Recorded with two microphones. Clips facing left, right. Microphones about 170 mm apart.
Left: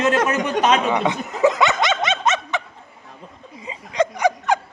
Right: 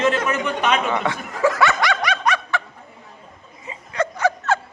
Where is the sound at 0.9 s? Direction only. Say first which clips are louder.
Left 2 dB; 20° left (ahead or behind).